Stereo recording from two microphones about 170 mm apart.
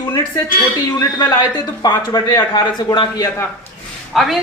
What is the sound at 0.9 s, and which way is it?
A man's voice, 25° left (ahead or behind).